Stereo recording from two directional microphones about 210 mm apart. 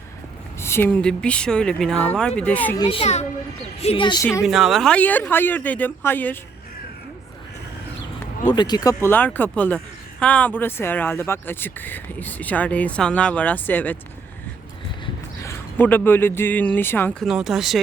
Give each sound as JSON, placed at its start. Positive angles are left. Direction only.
{"t": 0.6, "sound": "speech", "side_deg": 10}
{"t": 2.7, "sound": "a child's voice", "side_deg": 20}
{"t": 4.4, "sound": "speech", "side_deg": 0}
{"t": 8.5, "sound": "speech", "side_deg": 20}
{"t": 15.0, "sound": "speech", "side_deg": 10}
{"t": 17.2, "sound": "speech", "side_deg": 0}